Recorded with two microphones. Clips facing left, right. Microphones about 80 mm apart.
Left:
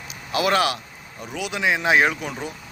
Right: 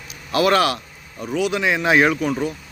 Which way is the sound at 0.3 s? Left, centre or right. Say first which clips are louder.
Right 4 dB; centre.